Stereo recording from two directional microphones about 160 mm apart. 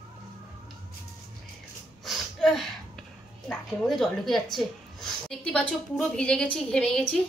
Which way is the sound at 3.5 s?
Centre (ahead or behind).